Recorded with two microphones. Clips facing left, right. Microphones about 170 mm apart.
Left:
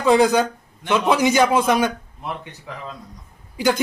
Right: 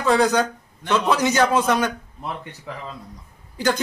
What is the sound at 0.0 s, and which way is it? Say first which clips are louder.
A man's voice: left 3 dB; 15° left (ahead or behind).